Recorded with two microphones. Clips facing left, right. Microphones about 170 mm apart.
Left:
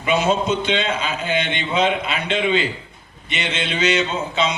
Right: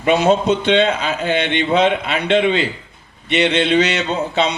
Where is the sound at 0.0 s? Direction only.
40° right (ahead or behind).